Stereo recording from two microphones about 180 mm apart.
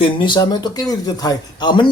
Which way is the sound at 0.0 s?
25° left (ahead or behind).